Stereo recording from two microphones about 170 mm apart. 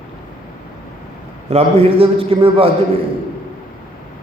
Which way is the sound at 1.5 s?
35° right (ahead or behind).